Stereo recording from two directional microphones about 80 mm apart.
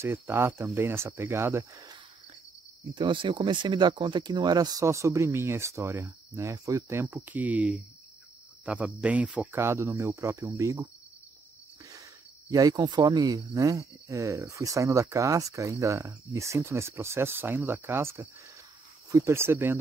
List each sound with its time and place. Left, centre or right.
0.0 s speech: right
2.9 s speech: right
4.8 s speech: right
7.2 s speech: centre
9.5 s speech: right
19.0 s speech: right
19.3 s speech: right